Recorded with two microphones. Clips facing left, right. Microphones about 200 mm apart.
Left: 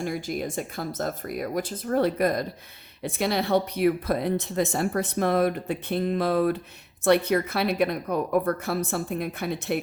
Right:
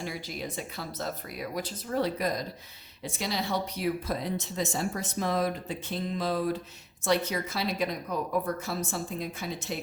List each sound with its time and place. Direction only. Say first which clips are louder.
0.0 s speech: left 7 dB; 50° left (ahead or behind)